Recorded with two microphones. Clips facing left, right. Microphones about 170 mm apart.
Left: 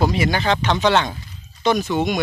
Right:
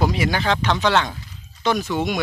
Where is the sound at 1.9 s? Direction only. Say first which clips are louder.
Left 2 dB; 5° right (ahead or behind).